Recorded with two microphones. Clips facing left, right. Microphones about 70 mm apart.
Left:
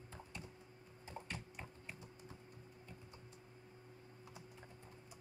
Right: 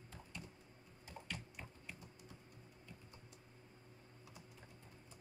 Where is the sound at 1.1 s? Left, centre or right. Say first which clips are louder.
Left 1 dB; left.